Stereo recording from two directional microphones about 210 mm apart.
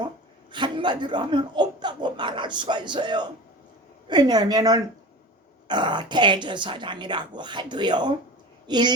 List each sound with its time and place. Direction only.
0.5 s a woman's voice: 20° right (ahead or behind)